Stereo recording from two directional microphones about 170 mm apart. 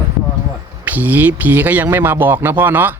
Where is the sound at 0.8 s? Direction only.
10° right (ahead or behind).